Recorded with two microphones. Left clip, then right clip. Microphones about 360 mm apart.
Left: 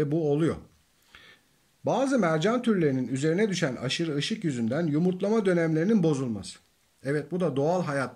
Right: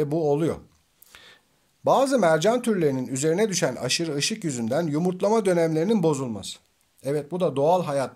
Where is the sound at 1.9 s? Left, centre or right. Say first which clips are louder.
Right 6 dB; centre.